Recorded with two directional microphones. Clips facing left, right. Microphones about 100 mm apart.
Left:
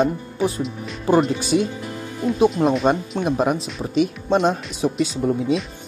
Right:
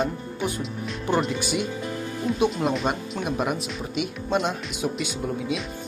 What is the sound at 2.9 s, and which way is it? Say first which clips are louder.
Speech: left 7 dB; 30° left (ahead or behind).